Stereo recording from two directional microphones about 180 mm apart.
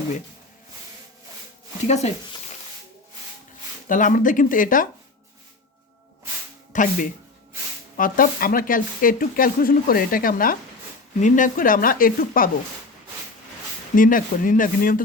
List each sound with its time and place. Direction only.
1.8 s speech: 40° left (ahead or behind)
3.8 s speech: 45° left (ahead or behind)
6.7 s speech: 45° left (ahead or behind)
7.9 s speech: 50° left (ahead or behind)
13.9 s speech: 50° left (ahead or behind)